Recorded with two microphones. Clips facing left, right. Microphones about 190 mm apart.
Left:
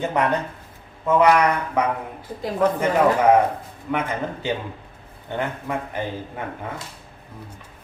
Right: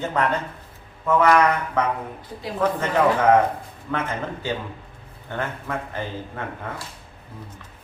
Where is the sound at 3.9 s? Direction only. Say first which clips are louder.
Left 2 dB; 15° left (ahead or behind).